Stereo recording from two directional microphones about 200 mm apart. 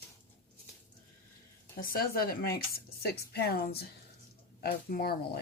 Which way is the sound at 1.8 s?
45° left (ahead or behind).